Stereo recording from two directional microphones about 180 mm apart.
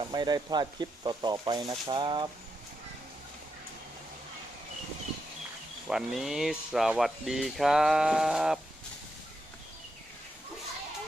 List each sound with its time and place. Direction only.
0.0 s speech: 25° right (ahead or behind)
5.9 s speech: centre (ahead or behind)